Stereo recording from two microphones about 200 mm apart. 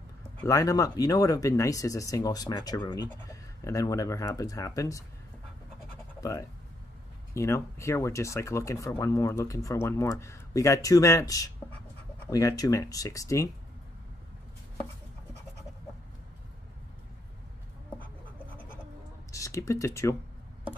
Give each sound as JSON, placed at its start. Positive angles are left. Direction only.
{"t": 0.4, "sound": "speech", "side_deg": 15}
{"t": 7.3, "sound": "speech", "side_deg": 15}
{"t": 19.3, "sound": "speech", "side_deg": 15}